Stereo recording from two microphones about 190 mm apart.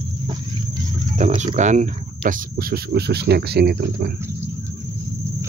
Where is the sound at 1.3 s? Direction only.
35° right (ahead or behind); by 4.1 s 60° right (ahead or behind).